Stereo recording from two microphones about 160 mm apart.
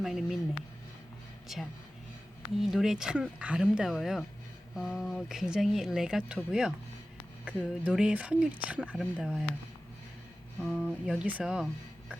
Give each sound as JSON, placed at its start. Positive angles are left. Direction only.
{"t": 0.0, "sound": "speech", "side_deg": 0}
{"t": 1.5, "sound": "speech", "side_deg": 0}
{"t": 10.6, "sound": "speech", "side_deg": -5}